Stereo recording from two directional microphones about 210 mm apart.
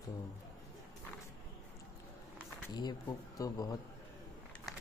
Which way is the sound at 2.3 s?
20° left (ahead or behind).